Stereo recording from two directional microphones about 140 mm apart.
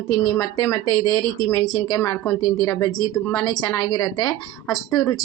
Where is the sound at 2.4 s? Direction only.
25° left (ahead or behind).